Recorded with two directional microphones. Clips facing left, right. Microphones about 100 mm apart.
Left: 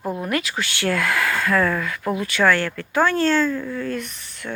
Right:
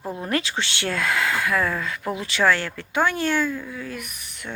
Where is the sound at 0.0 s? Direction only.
20° left (ahead or behind).